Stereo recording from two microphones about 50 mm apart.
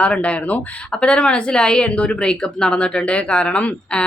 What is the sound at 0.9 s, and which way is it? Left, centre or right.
Speech, centre.